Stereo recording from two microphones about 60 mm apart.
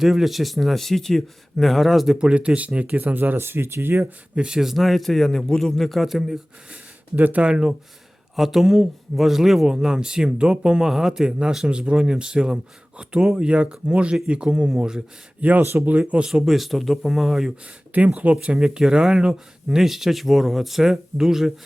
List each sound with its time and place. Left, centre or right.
0.0 s a man's voice: centre
2.1 s speech: centre
3.3 s speech: right
4.0 s a man's voice: centre
7.2 s speech: right
8.4 s a man's voice: centre
15.4 s speech: right
16.3 s a man's voice: centre
17.9 s speech: right; by 21.5 s centre